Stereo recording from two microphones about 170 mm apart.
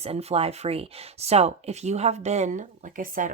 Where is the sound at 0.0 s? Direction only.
35° right (ahead or behind).